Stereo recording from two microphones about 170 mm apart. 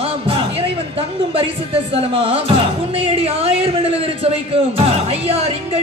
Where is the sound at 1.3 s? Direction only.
30° right (ahead or behind).